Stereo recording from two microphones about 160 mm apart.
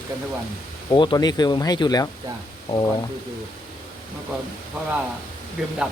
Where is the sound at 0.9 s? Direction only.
25° left (ahead or behind).